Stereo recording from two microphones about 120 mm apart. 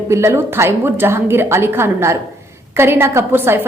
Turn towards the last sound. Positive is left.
turn(degrees=-20)  # may be behind; listen again after turning